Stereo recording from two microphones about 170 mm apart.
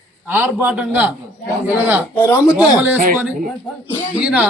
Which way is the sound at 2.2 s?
15° left (ahead or behind).